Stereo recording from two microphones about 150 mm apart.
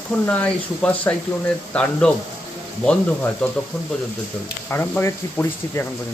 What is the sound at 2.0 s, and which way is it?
Speech, 5° left (ahead or behind).